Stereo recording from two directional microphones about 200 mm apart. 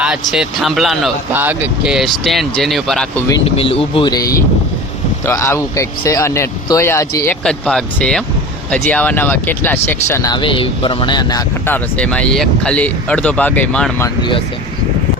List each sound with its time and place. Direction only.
0.0 s speech: 5° right (ahead or behind)
3.4 s speech: 30° left (ahead or behind)
7.4 s speech: 5° left (ahead or behind)
14.2 s speech: 25° left (ahead or behind)